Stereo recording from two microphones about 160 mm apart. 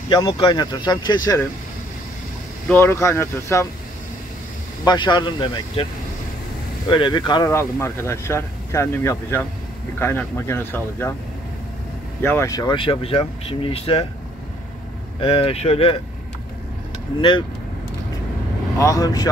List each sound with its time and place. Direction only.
0.1 s speech: 30° left (ahead or behind)
2.7 s speech: 15° left (ahead or behind)
4.8 s speech: 30° left (ahead or behind)
6.9 s speech: 30° left (ahead or behind)
7.4 s speech: 15° left (ahead or behind)
12.2 s speech: 15° left (ahead or behind); by 14.0 s 35° left (ahead or behind)
15.1 s speech: 35° left (ahead or behind)
17.2 s speech: 30° left (ahead or behind)
18.8 s speech: 20° left (ahead or behind)